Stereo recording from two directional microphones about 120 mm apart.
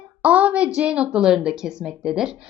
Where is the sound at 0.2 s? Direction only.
10° right (ahead or behind).